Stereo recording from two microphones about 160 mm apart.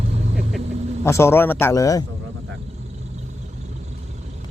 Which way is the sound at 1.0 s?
15° left (ahead or behind).